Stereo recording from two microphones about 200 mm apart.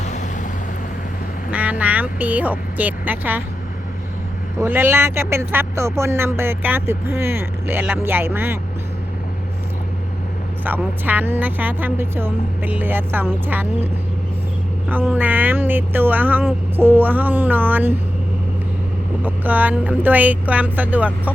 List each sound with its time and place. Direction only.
1.5 s speech: 5° right (ahead or behind)
4.6 s speech: 10° right (ahead or behind)
10.6 s speech: 10° right (ahead or behind)
14.8 s speech: 5° right (ahead or behind)
19.2 s speech: 10° right (ahead or behind)